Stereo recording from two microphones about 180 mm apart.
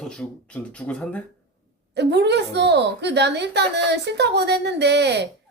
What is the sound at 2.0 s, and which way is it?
A woman's voice, 70° right (ahead or behind).